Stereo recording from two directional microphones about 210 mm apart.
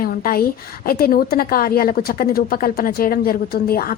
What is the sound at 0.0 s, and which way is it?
A woman's voice, 45° left (ahead or behind).